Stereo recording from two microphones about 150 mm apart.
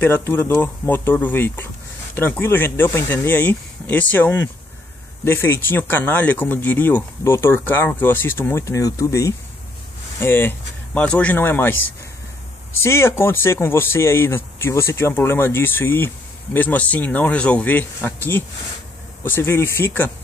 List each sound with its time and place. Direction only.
0.0 s speech: 15° left (ahead or behind)
12.7 s speech: 15° left (ahead or behind)